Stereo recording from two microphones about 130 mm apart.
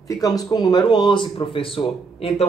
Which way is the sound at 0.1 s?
30° left (ahead or behind).